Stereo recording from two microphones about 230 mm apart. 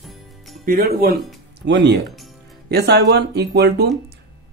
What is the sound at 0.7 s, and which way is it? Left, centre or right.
Speech, right.